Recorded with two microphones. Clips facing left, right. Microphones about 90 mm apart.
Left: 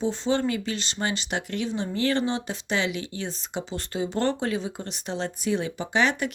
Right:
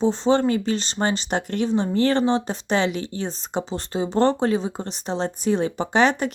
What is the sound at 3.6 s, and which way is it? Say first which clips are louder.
Speech: right 3 dB; 25° right (ahead or behind).